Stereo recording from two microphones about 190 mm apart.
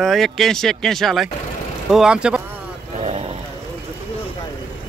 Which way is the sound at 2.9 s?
35° right (ahead or behind).